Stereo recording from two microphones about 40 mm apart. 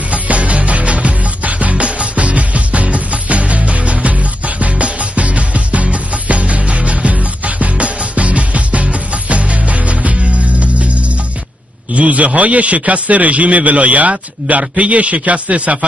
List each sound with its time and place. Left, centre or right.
0.1 s music: right
11.9 s a sound: right
12.4 s a man's voice: right